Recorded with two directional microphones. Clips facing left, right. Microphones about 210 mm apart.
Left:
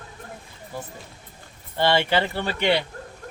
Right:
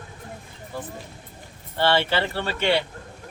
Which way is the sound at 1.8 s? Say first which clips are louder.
Left 1 dB; 15° left (ahead or behind).